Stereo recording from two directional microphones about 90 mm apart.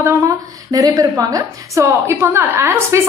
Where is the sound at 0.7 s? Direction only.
40° right (ahead or behind).